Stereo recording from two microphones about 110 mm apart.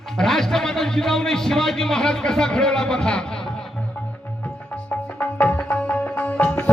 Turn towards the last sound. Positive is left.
turn(degrees=15)  # may be behind; listen again after turning